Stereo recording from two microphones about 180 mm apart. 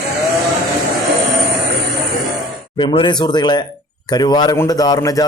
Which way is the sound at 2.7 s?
25° left (ahead or behind).